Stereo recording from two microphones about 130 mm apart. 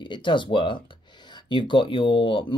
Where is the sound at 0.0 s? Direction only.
40° left (ahead or behind).